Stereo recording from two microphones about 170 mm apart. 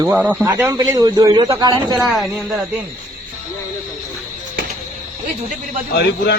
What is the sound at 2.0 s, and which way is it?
Speech, centre (ahead or behind).